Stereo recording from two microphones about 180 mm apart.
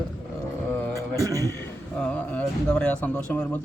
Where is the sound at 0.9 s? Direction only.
20° right (ahead or behind).